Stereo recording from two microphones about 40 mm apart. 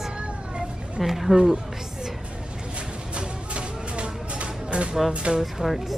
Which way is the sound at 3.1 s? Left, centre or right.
Right.